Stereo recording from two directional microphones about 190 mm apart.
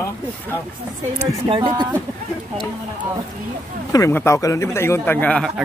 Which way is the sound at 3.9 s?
15° left (ahead or behind).